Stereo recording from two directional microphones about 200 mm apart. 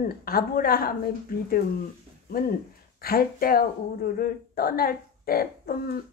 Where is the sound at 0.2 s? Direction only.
50° left (ahead or behind).